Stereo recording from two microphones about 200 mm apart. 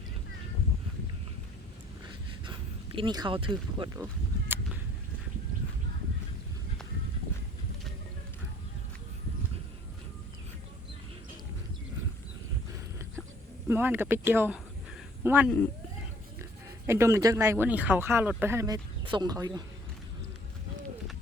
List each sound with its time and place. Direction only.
2.4 s speech: 25° right (ahead or behind)
4.0 s a sound: 10° right (ahead or behind)
13.7 s a man's voice: 10° right (ahead or behind)
15.4 s speech: 10° left (ahead or behind)
16.4 s speech: 15° right (ahead or behind)